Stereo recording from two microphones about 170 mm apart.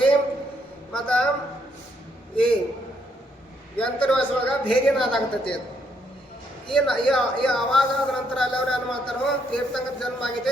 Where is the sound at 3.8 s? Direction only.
5° left (ahead or behind).